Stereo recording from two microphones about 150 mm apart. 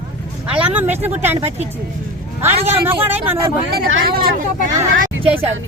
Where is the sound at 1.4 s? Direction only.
45° right (ahead or behind).